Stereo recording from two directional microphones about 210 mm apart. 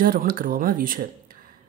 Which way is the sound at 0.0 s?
45° right (ahead or behind).